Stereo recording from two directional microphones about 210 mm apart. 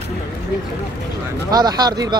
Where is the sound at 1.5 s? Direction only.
20° right (ahead or behind).